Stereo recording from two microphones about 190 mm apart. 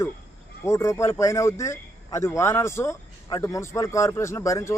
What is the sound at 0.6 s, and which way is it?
Speech, 15° left (ahead or behind).